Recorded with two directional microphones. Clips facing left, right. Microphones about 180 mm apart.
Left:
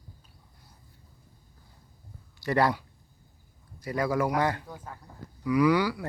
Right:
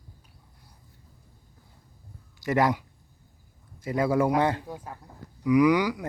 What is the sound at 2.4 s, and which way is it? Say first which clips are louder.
Speech: right 1 dB; 15° right (ahead or behind).